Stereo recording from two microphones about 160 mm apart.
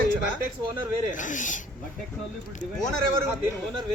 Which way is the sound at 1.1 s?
50° left (ahead or behind).